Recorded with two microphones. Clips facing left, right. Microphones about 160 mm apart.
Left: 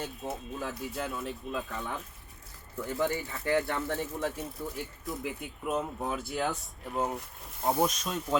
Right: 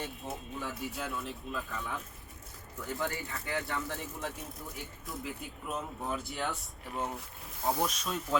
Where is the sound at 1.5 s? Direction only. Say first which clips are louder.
Left 3 dB; 25° left (ahead or behind).